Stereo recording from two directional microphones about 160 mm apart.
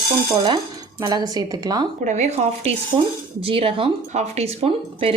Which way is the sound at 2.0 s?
45° right (ahead or behind).